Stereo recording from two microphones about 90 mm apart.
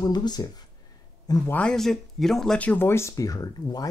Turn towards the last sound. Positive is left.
turn(degrees=45)  # may be behind; listen again after turning